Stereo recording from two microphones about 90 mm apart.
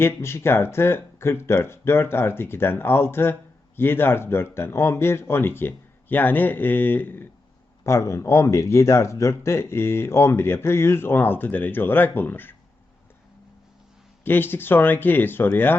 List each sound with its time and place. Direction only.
0.0 s speech: 30° left (ahead or behind)
14.3 s speech: 25° left (ahead or behind)